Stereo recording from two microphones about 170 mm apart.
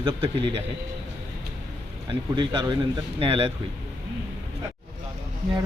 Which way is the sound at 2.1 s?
25° right (ahead or behind).